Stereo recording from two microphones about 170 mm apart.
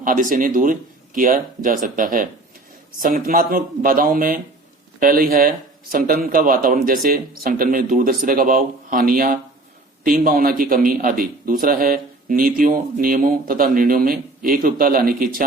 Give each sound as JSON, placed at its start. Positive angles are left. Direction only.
{"t": 0.0, "sound": "a man's voice", "side_deg": -50}